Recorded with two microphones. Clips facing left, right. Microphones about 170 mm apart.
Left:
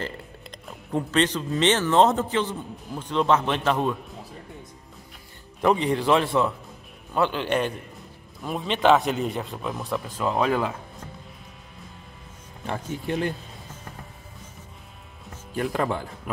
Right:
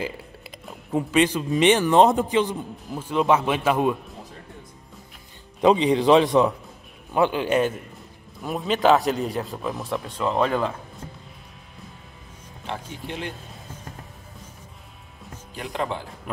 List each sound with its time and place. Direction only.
0.0 s speech: 5° right (ahead or behind)
5.6 s speech: 15° right (ahead or behind); by 10.7 s 5° left (ahead or behind)
12.6 s speech: 45° left (ahead or behind)